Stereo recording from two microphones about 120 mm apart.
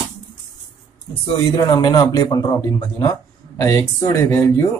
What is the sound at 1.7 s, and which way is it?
Speech, 35° left (ahead or behind).